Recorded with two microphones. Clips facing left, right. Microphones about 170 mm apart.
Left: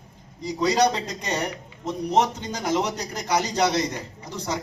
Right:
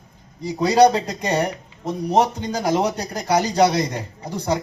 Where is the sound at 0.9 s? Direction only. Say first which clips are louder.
Right 6 dB; 55° right (ahead or behind).